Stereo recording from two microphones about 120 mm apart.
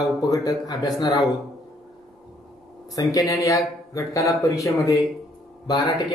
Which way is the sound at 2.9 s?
25° left (ahead or behind).